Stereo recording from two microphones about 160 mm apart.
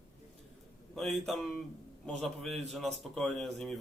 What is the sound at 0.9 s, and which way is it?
Speech, centre (ahead or behind).